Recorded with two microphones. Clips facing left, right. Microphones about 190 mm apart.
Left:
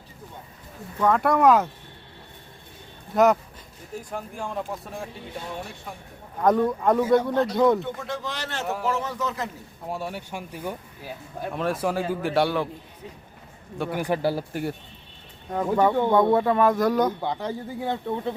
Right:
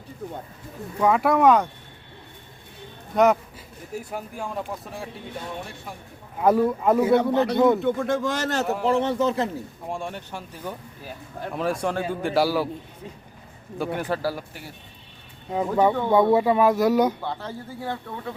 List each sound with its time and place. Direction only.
0.9 s speech: 10° right (ahead or behind)
3.1 s speech: 5° left (ahead or behind)
6.4 s speech: 5° right (ahead or behind)
7.2 s a man's voice: 70° right (ahead or behind)
7.5 s speech: centre (ahead or behind)
7.8 s speech: 50° right (ahead or behind)
8.6 s speech: centre (ahead or behind)
8.9 s speech: 30° right (ahead or behind)
9.9 s speech: 5° left (ahead or behind)
11.5 s speech: centre (ahead or behind)
13.7 s speech: centre (ahead or behind)
14.0 s speech: 20° left (ahead or behind)
15.4 s speech: 10° right (ahead or behind)
17.2 s speech: 15° left (ahead or behind)